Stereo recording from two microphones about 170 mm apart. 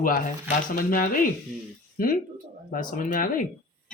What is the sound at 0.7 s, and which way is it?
Speech, 55° left (ahead or behind).